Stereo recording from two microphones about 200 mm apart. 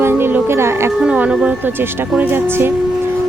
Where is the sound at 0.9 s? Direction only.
5° right (ahead or behind).